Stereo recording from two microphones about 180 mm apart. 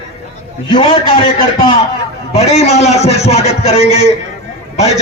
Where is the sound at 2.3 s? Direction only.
35° left (ahead or behind).